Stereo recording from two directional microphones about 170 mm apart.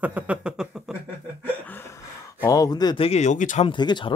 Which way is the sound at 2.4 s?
20° left (ahead or behind).